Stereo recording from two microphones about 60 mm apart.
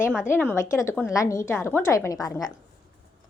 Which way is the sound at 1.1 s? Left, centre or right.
Left.